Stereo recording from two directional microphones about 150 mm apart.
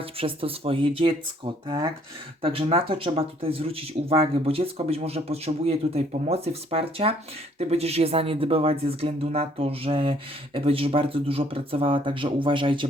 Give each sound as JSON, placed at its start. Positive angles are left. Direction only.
{"t": 0.0, "sound": "speech", "side_deg": -40}